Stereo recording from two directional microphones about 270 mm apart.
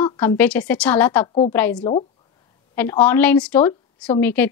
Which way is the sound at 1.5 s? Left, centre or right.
Centre.